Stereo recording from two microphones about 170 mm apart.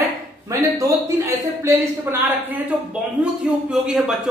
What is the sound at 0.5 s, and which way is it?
A man's voice, 20° right (ahead or behind).